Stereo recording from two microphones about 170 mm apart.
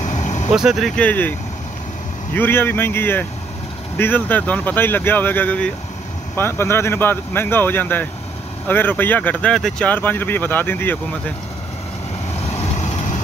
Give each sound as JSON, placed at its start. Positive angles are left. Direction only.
{"t": 0.0, "sound": "vehicle", "side_deg": 45}
{"t": 0.6, "sound": "speech", "side_deg": 0}
{"t": 2.3, "sound": "speech", "side_deg": 10}
{"t": 12.4, "sound": "vehicle", "side_deg": 40}